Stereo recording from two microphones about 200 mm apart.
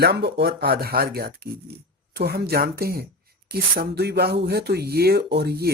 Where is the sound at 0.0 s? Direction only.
55° right (ahead or behind).